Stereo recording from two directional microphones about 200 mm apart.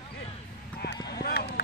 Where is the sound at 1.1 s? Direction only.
50° left (ahead or behind).